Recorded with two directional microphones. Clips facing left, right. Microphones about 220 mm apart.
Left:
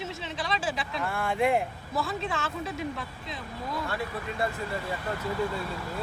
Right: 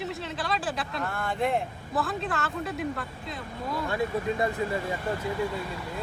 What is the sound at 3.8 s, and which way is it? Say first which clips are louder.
Speech: right 6 dB; 15° right (ahead or behind).